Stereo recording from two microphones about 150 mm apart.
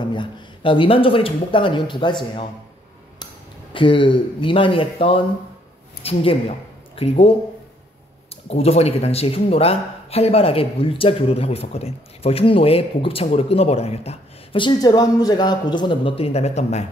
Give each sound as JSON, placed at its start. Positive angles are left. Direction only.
{"t": 0.1, "sound": "speech", "side_deg": 35}
{"t": 3.7, "sound": "speech", "side_deg": 35}
{"t": 8.5, "sound": "speech", "side_deg": 45}